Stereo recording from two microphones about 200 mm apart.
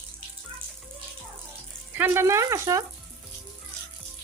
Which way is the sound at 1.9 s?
10° right (ahead or behind).